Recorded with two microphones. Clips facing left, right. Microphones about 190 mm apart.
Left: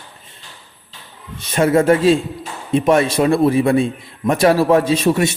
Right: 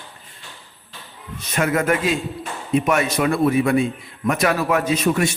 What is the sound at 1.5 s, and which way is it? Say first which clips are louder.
A man's voice: left 7 dB; 30° left (ahead or behind).